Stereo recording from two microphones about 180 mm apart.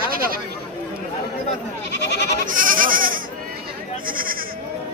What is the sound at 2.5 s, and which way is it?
Goat, 50° right (ahead or behind).